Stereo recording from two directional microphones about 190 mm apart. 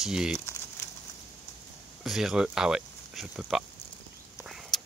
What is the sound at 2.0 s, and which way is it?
Speech, centre (ahead or behind).